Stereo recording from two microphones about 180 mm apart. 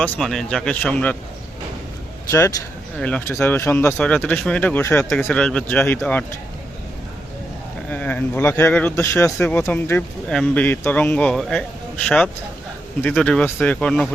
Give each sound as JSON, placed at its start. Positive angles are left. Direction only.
{"t": 0.0, "sound": "speech", "side_deg": 5}
{"t": 2.3, "sound": "a man's voice", "side_deg": 15}
{"t": 7.9, "sound": "a man's voice", "side_deg": 10}